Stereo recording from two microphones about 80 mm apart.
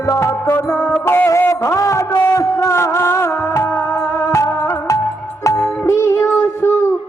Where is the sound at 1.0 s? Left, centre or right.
Left.